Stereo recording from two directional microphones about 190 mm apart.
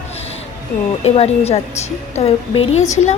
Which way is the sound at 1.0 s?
35° left (ahead or behind).